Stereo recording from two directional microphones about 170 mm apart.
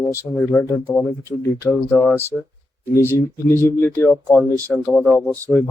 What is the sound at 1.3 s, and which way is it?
Speech, 5° right (ahead or behind).